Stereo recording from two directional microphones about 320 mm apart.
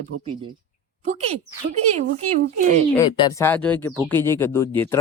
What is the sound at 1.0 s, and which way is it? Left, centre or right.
Speech, centre.